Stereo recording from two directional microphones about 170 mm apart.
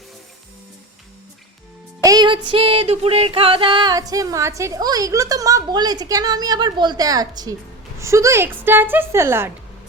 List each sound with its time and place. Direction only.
2.0 s music: 25° right (ahead or behind)
7.9 s a woman's voice: 15° right (ahead or behind)